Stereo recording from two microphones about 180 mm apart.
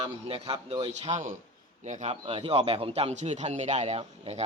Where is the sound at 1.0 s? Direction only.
40° right (ahead or behind).